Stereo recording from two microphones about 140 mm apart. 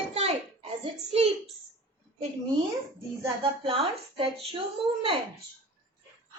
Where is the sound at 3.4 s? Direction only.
40° right (ahead or behind).